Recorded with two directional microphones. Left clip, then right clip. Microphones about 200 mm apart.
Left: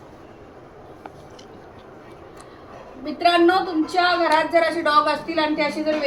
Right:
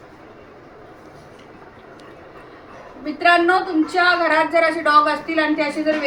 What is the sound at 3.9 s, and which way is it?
A woman's voice, 20° left (ahead or behind).